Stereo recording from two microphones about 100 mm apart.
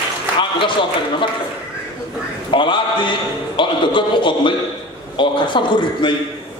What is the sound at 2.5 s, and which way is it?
A man's voice, 55° left (ahead or behind).